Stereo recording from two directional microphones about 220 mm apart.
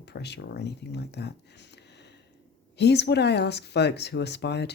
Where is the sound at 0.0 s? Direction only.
50° left (ahead or behind).